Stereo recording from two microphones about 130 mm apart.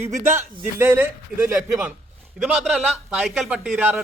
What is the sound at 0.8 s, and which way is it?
Speech, 15° right (ahead or behind).